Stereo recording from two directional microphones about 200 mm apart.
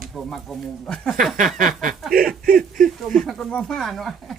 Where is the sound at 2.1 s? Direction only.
45° right (ahead or behind).